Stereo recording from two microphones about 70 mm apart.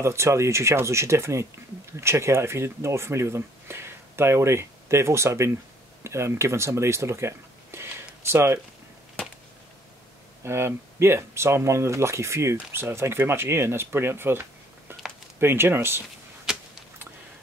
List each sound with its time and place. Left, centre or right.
0.0 s speech: right
10.4 s speech: right